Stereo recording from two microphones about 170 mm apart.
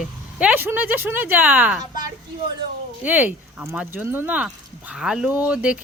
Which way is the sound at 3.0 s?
10° right (ahead or behind).